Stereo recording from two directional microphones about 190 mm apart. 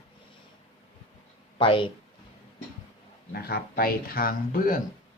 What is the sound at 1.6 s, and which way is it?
Speech, 25° left (ahead or behind).